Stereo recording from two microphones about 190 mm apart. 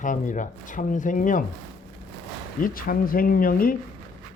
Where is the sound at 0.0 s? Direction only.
45° left (ahead or behind).